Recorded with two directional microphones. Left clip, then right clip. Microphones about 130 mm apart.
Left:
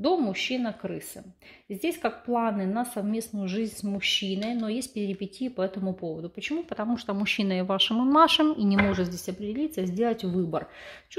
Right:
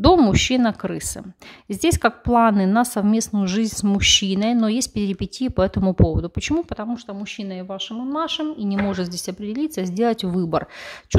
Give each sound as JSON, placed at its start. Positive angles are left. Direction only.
{"t": 0.0, "sound": "a woman's voice", "side_deg": -60}
{"t": 7.2, "sound": "speech", "side_deg": 10}
{"t": 8.9, "sound": "a woman's voice", "side_deg": -25}